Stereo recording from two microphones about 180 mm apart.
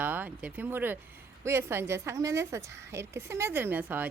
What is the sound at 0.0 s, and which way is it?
Speech, 10° right (ahead or behind).